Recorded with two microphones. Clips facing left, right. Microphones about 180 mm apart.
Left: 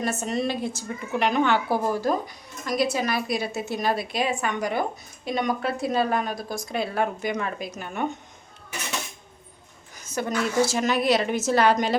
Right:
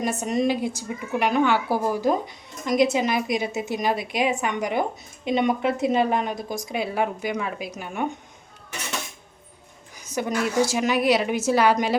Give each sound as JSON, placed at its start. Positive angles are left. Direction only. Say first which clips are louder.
{"t": 0.0, "sound": "a woman's voice", "louder": "right 3 dB", "side_deg": -15}
{"t": 10.0, "sound": "a woman's voice", "louder": "right 1 dB", "side_deg": -15}